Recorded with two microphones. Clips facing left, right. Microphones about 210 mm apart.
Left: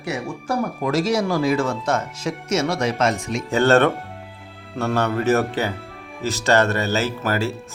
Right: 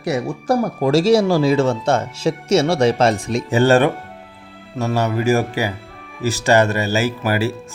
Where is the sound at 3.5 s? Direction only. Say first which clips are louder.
Right 2 dB; 15° right (ahead or behind).